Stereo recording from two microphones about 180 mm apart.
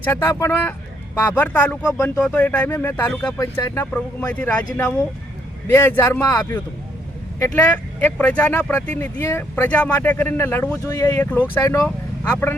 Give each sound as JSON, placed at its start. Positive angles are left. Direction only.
{"t": 0.0, "sound": "speech", "side_deg": 10}